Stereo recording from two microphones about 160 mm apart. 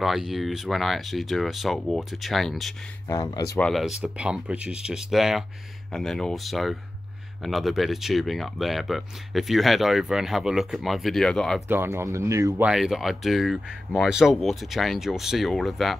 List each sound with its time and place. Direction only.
0.0 s speech: centre (ahead or behind)
3.1 s speech: 25° left (ahead or behind)
3.5 s speech: 5° left (ahead or behind)
11.6 s speech: 15° right (ahead or behind)
12.6 s speech: centre (ahead or behind)